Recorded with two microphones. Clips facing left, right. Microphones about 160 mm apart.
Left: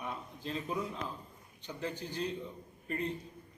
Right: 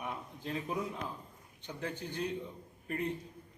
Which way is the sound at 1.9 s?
55° right (ahead or behind).